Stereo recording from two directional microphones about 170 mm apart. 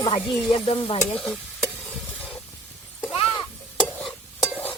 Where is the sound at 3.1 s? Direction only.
30° left (ahead or behind).